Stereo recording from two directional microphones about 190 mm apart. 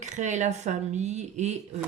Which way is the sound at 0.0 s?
40° right (ahead or behind).